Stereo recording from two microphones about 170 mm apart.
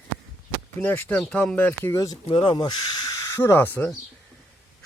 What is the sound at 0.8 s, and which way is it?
Speech, 10° left (ahead or behind).